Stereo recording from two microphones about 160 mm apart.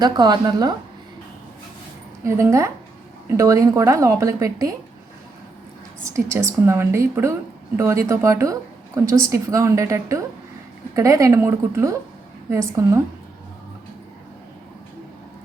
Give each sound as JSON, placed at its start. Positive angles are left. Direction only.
{"t": 0.0, "sound": "a woman's voice", "side_deg": -25}
{"t": 2.2, "sound": "a woman's voice", "side_deg": -20}
{"t": 6.1, "sound": "a woman's voice", "side_deg": -20}